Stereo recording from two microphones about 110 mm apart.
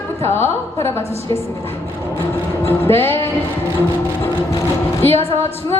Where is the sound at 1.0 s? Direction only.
70° right (ahead or behind).